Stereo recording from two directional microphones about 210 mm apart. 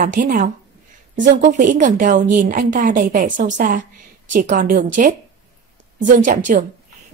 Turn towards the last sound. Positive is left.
turn(degrees=-40)  # may be behind; listen again after turning